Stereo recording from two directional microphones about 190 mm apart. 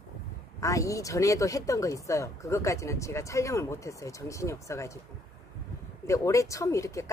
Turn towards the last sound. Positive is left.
turn(degrees=15)  # may be behind; listen again after turning